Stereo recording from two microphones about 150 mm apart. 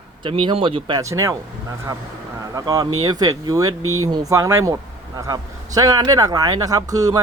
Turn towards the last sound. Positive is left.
turn(degrees=-25)  # may be behind; listen again after turning